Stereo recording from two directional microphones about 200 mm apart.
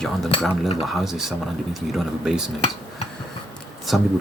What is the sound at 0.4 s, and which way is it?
Speech, centre (ahead or behind).